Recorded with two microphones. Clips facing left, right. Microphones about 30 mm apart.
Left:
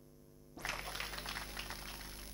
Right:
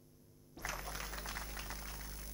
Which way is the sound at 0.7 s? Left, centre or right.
Left.